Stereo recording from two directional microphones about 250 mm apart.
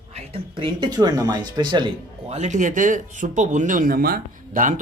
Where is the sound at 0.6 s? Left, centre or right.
Centre.